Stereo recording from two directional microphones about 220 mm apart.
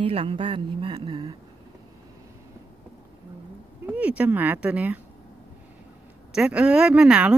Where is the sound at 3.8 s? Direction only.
5° right (ahead or behind).